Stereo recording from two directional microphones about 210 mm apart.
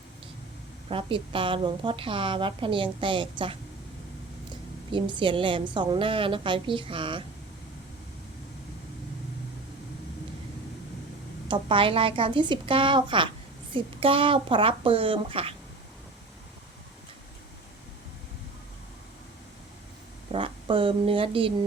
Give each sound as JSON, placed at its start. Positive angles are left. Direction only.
{"t": 0.9, "sound": "a woman's voice", "side_deg": -25}
{"t": 4.9, "sound": "a woman's voice", "side_deg": -25}
{"t": 11.4, "sound": "a woman's voice", "side_deg": -25}
{"t": 20.3, "sound": "speech", "side_deg": -25}